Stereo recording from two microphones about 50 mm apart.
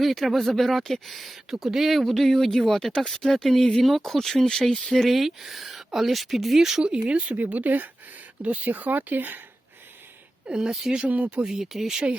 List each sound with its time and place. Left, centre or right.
0.0 s speech: centre; by 9.4 s right
10.4 s speech: centre
11.0 s speech: right
11.3 s speech: centre